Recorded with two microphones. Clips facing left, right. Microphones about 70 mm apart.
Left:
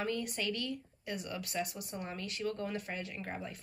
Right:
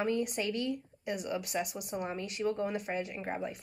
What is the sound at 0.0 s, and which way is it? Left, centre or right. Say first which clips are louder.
A woman's voice: right 4 dB; right.